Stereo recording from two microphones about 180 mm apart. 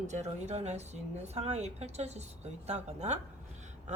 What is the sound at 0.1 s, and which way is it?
A woman's voice, 40° right (ahead or behind).